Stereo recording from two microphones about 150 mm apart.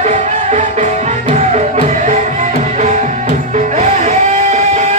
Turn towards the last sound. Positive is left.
turn(degrees=-45)  # may be behind; listen again after turning